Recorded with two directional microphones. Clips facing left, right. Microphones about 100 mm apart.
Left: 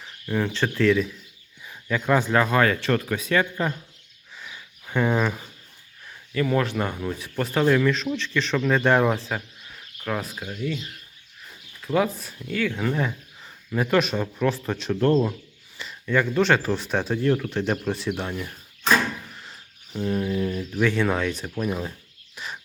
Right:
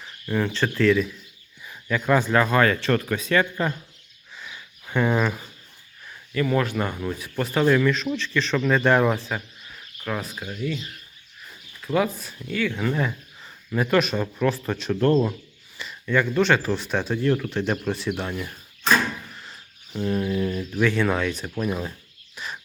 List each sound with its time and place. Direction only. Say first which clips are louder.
0.0 s speech: right 1 dB; 15° left (ahead or behind)
4.5 s a sound: right 1 dB; 10° left (ahead or behind)
6.3 s speech: even; 30° left (ahead or behind)
10.0 s speech: left 1 dB; 45° left (ahead or behind)
10.5 s speech: even; 25° left (ahead or behind)
11.8 s speech: even; 25° left (ahead or behind)
12.5 s speech: even; 45° left (ahead or behind)
12.8 s speech: even; 20° left (ahead or behind)
15.8 s speech: even; 30° left (ahead or behind)
20.0 s speech: right 1 dB; 15° left (ahead or behind)
20.7 s speech: even; 20° left (ahead or behind)